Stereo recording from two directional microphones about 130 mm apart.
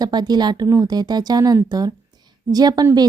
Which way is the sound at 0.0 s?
30° right (ahead or behind).